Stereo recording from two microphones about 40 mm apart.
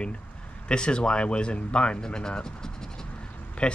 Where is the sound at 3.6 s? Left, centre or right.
Left.